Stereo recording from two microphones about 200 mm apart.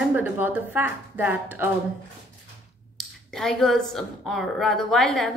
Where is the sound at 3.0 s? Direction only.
Centre (ahead or behind).